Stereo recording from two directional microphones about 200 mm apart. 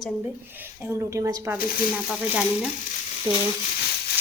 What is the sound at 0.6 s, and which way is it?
A woman's voice, 10° right (ahead or behind).